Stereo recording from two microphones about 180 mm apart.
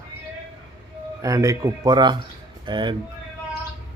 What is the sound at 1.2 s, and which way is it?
Speech, 20° right (ahead or behind).